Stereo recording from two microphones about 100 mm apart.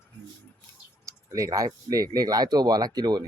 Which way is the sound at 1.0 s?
35° right (ahead or behind).